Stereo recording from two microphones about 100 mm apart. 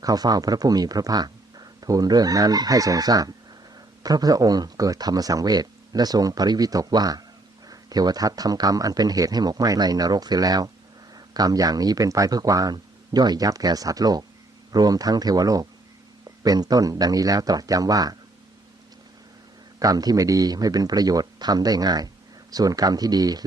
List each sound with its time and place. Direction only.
0.0 s speech: 40° right (ahead or behind)
19.8 s speech: 40° right (ahead or behind)